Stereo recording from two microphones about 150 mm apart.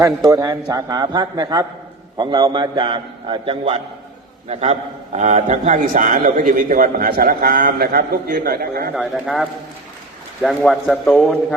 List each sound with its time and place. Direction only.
0.0 s a man's voice: 25° right (ahead or behind)
4.4 s a man's voice: 45° right (ahead or behind); by 8.9 s 90° right
9.0 s a man's voice: centre (ahead or behind)